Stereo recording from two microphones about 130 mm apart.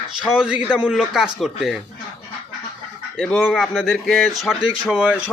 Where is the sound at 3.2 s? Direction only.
5° left (ahead or behind).